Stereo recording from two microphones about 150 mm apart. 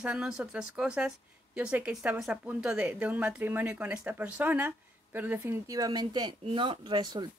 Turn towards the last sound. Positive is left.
turn(degrees=-30)  # may be behind; listen again after turning